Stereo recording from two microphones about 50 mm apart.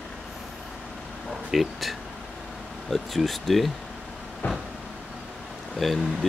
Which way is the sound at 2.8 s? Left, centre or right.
Centre.